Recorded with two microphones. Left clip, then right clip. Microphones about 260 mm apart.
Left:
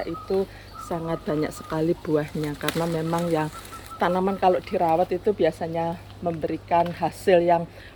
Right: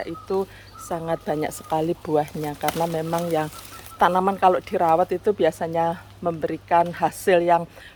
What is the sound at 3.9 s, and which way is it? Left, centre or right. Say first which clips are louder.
Speech: right 4 dB; centre.